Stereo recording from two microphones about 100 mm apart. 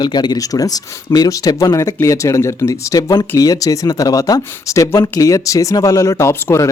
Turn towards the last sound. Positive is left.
turn(degrees=30)  # may be behind; listen again after turning